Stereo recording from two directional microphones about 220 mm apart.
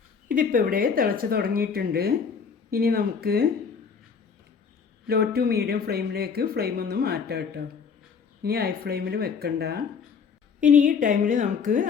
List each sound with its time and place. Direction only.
0.3 s speech: 40° right (ahead or behind)
5.0 s speech: 45° right (ahead or behind)
10.6 s speech: 35° right (ahead or behind)